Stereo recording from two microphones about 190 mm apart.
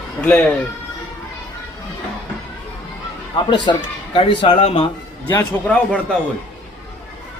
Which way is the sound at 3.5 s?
25° left (ahead or behind).